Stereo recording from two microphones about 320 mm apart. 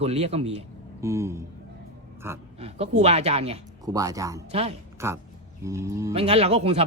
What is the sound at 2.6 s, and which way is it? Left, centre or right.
Speech, centre.